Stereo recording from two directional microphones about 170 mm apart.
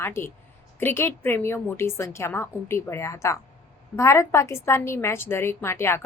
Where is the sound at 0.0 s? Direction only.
15° left (ahead or behind).